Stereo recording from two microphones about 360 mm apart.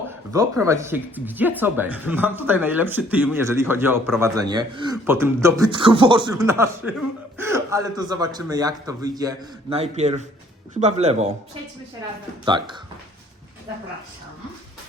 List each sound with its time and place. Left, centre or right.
0.3 s a man's voice: centre
12.5 s speech: centre